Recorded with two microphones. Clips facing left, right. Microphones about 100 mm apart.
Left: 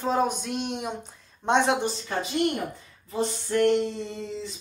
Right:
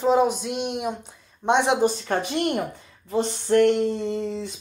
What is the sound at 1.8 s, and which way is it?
Speech, 55° right (ahead or behind).